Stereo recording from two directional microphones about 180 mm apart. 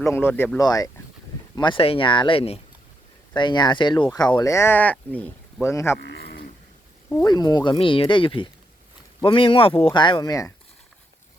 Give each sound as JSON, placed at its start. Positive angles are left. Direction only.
{"t": 0.0, "sound": "speech", "side_deg": 15}
{"t": 6.0, "sound": "livestock", "side_deg": 70}
{"t": 7.1, "sound": "speech", "side_deg": 20}